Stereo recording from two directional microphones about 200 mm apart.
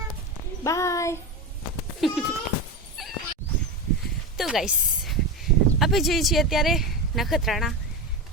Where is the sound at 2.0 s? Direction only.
Centre (ahead or behind).